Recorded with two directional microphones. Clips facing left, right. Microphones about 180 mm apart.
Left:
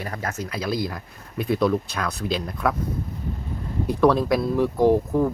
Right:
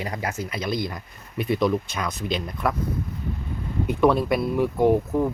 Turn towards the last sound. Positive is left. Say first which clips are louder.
# left 1 dB
turn(degrees=0)  # may be behind; listen again after turning